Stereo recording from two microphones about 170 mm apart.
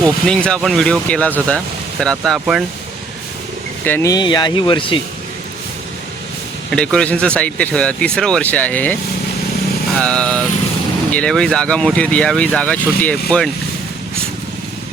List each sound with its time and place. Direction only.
0.3 s speech: 5° left (ahead or behind)
3.8 s speech: 15° left (ahead or behind)
6.7 s speech: 5° left (ahead or behind)
10.0 s speech: 5° left (ahead or behind)